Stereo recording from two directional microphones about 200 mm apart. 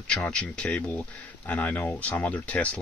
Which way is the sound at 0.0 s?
5° left (ahead or behind).